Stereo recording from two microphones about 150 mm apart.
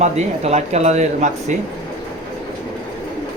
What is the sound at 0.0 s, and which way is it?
Speech, 50° right (ahead or behind).